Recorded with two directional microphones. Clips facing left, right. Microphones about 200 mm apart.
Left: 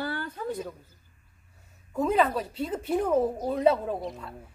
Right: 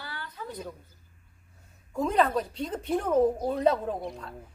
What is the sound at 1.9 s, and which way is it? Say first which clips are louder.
A woman's voice: left 1 dB; 5° left (ahead or behind).